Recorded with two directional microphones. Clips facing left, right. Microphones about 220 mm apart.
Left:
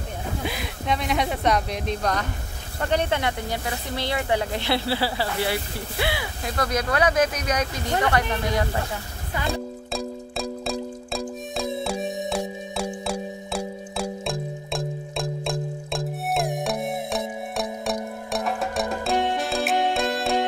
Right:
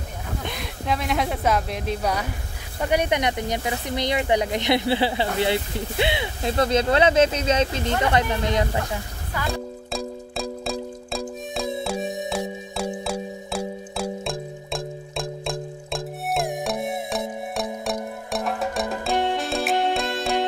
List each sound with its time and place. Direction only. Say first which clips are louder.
0.5 s speech: right 1 dB; centre (ahead or behind); by 8.6 s 20° right (ahead or behind)
9.5 s music: left 1 dB; centre (ahead or behind)